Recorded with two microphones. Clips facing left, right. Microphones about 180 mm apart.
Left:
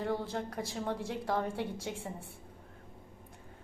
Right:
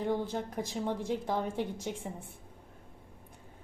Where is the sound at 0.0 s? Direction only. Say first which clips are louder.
Right 2 dB; 15° right (ahead or behind).